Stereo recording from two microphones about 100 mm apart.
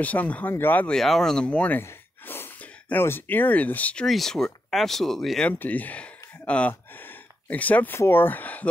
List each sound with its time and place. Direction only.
0.0 s speech: 15° left (ahead or behind)
0.9 s speech: 5° left (ahead or behind)
5.5 s speech: 20° left (ahead or behind)